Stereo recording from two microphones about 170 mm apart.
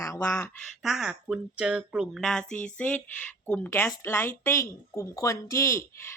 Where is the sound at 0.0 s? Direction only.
15° left (ahead or behind).